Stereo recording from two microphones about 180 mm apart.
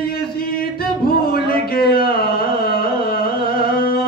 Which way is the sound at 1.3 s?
55° left (ahead or behind).